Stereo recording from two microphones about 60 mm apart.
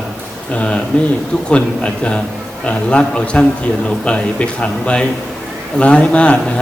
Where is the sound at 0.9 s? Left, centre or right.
Left.